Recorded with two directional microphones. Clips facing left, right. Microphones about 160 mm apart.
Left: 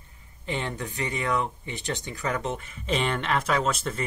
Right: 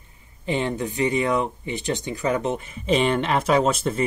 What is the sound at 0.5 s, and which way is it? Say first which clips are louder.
Speech: right 7 dB; 20° right (ahead or behind).